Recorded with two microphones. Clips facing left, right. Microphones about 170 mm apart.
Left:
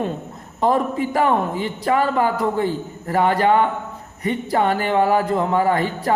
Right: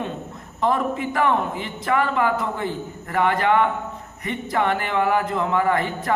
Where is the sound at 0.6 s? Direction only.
35° left (ahead or behind).